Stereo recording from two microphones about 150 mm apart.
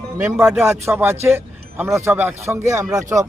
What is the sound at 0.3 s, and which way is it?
Speech, 15° right (ahead or behind).